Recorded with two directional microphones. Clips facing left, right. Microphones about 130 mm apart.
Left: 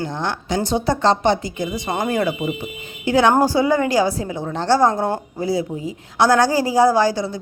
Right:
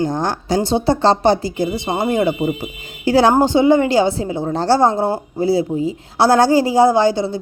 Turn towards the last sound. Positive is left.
turn(degrees=-25)  # may be behind; listen again after turning